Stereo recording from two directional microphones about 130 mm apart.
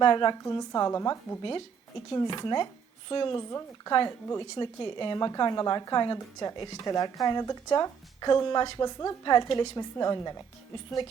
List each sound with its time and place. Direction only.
0.0 s speech: 40° left (ahead or behind)
0.4 s a woman's voice: 25° left (ahead or behind)
1.4 s speech: 40° left (ahead or behind)
3.3 s a woman's voice: 30° left (ahead or behind)
4.5 s speech: 40° left (ahead or behind)